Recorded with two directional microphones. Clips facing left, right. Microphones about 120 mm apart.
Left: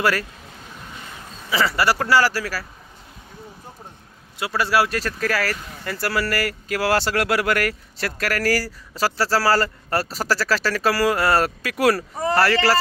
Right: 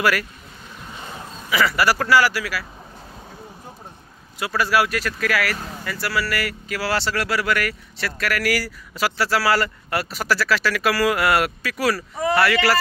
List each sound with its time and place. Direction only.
0.0 s speech: 30° left (ahead or behind)
1.5 s speech: 30° left (ahead or behind)
4.4 s speech: 25° left (ahead or behind)
11.6 s speech: 50° left (ahead or behind); by 12.7 s 35° left (ahead or behind)